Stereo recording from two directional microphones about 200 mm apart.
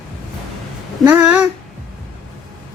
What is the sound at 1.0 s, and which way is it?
Speech, 5° right (ahead or behind).